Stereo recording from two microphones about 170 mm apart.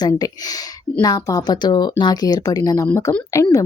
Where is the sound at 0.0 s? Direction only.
20° left (ahead or behind).